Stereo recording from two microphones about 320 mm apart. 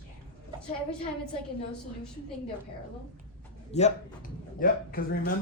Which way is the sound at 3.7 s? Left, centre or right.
Left.